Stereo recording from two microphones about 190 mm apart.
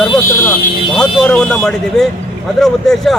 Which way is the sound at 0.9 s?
5° left (ahead or behind).